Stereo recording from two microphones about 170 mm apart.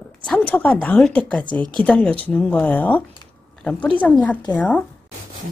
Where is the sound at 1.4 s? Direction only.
30° right (ahead or behind).